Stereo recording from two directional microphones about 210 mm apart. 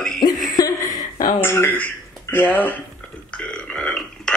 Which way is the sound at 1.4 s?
10° left (ahead or behind).